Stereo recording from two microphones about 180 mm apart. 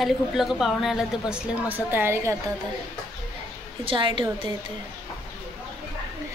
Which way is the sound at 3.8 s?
25° right (ahead or behind).